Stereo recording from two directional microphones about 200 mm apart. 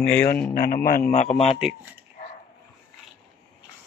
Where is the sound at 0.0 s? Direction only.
10° left (ahead or behind).